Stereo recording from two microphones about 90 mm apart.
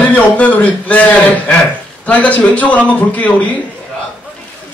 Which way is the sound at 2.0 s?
15° left (ahead or behind).